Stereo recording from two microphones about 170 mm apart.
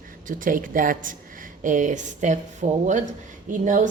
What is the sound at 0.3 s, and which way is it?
A woman's voice, 50° right (ahead or behind).